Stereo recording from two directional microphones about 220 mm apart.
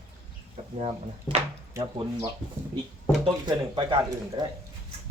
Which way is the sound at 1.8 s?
15° right (ahead or behind).